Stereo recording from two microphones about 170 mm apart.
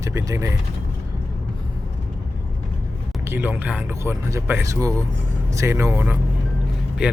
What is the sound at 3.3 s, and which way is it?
Speech, 10° right (ahead or behind).